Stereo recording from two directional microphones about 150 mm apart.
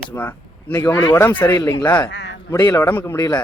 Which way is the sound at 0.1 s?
20° left (ahead or behind).